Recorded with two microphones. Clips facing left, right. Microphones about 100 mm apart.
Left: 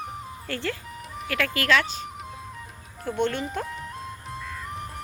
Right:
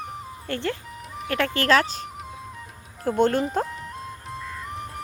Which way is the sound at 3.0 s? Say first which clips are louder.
Right 6 dB; 40° right (ahead or behind).